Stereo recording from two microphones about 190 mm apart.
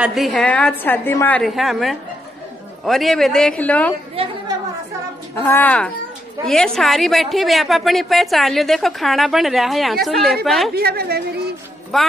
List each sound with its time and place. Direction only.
0.0 s a woman's voice: centre (ahead or behind)
4.2 s chatter: 30° right (ahead or behind)
5.3 s a woman's voice: 10° left (ahead or behind)
10.7 s a woman's voice: 55° right (ahead or behind)
11.9 s a woman's voice: centre (ahead or behind)